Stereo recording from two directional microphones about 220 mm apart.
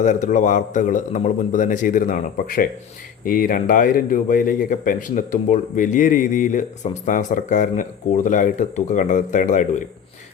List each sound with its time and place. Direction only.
0.0 s speech: 35° left (ahead or behind)